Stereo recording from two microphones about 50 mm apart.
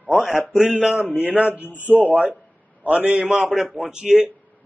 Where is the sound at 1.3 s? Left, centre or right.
Right.